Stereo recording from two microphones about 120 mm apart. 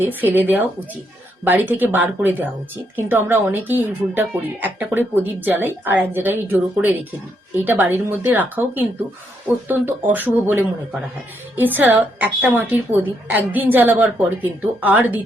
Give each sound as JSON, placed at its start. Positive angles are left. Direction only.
{"t": 0.0, "sound": "a woman's voice", "side_deg": -15}